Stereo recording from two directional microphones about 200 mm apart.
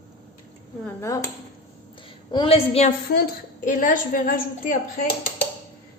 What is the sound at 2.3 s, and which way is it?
Speech, 25° left (ahead or behind).